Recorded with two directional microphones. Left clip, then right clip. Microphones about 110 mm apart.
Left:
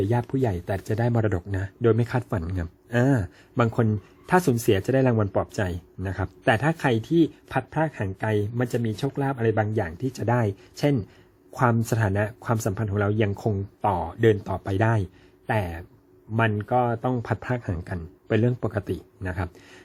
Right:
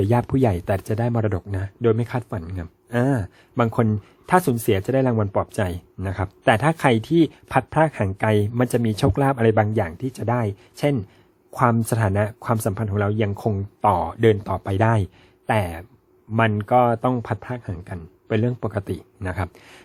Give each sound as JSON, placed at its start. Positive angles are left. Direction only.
{"t": 0.0, "sound": "speech", "side_deg": -50}
{"t": 0.9, "sound": "speech", "side_deg": -25}
{"t": 9.0, "sound": "speech", "side_deg": -60}
{"t": 10.0, "sound": "speech", "side_deg": -25}
{"t": 17.2, "sound": "speech", "side_deg": -20}
{"t": 17.4, "sound": "a man's voice", "side_deg": 0}
{"t": 18.3, "sound": "a man's voice", "side_deg": -15}
{"t": 18.8, "sound": "speech", "side_deg": -30}